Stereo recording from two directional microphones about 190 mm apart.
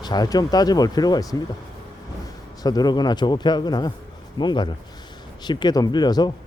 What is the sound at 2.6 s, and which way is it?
Speech, 20° left (ahead or behind).